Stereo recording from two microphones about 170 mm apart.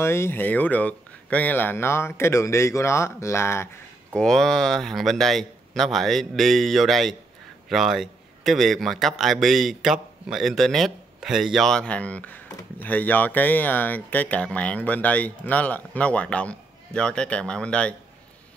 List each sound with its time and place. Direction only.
0.0 s speech: 15° left (ahead or behind)
4.1 s a man's voice: 5° left (ahead or behind)